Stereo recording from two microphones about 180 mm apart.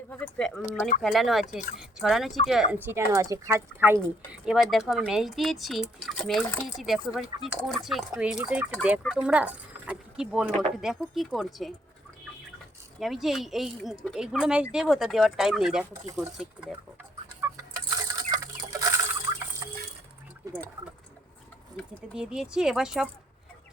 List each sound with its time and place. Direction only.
0.1 s speech: 5° left (ahead or behind)
13.0 s speech: centre (ahead or behind)
17.4 s patter: 10° right (ahead or behind)
17.9 s chicken: 20° right (ahead or behind)
22.1 s speech: 5° right (ahead or behind)